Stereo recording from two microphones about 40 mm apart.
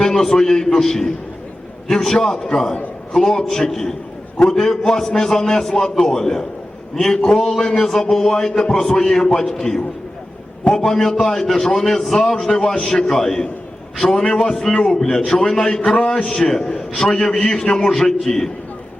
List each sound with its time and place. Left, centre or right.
0.0 s a man's voice: centre